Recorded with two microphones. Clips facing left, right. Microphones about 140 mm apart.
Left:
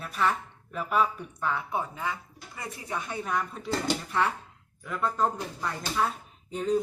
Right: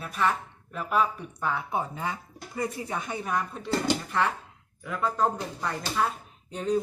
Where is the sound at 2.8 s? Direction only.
20° right (ahead or behind).